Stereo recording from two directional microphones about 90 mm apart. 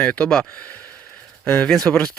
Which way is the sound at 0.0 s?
15° left (ahead or behind).